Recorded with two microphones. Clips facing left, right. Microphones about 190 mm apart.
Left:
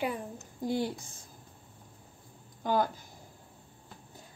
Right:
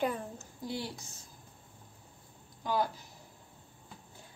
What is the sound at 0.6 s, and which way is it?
Speech, 50° left (ahead or behind).